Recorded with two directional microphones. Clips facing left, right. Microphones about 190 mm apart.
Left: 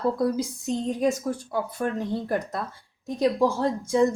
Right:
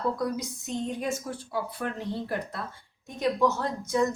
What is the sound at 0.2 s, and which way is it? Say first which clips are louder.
Speech: left 6 dB; 30° left (ahead or behind).